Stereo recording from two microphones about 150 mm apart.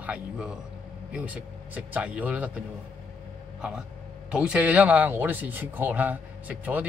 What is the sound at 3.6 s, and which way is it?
A man's voice, 5° right (ahead or behind).